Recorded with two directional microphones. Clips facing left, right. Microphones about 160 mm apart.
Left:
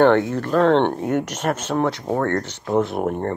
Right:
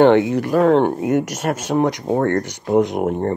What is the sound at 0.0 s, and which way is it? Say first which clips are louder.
Speech: right 3 dB; 15° right (ahead or behind).